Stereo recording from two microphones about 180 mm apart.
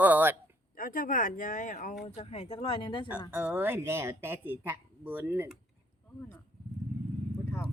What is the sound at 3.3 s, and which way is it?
Speech, 10° right (ahead or behind).